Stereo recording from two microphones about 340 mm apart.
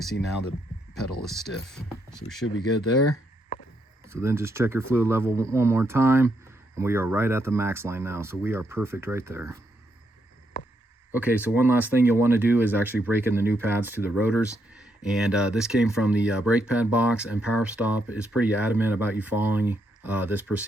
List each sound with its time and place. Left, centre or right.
0.9 s speech: centre
2.4 s speech: left
4.1 s speech: centre
11.1 s speech: centre